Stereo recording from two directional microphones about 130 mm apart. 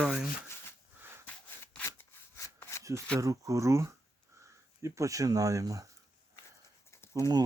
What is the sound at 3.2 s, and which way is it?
Speech, 25° right (ahead or behind).